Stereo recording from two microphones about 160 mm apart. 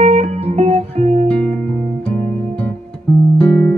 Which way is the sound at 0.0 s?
45° right (ahead or behind).